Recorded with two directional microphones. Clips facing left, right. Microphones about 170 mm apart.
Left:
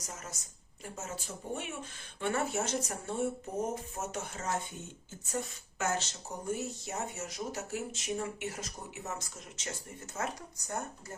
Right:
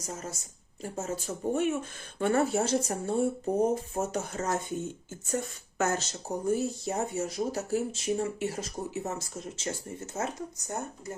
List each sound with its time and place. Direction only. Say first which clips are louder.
0.0 s speech: right 7 dB; 30° right (ahead or behind)
5.7 s speech: right 5 dB; 40° right (ahead or behind); by 10.3 s 25° right (ahead or behind)